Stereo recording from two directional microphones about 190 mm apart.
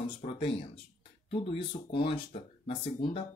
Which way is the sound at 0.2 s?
30° left (ahead or behind).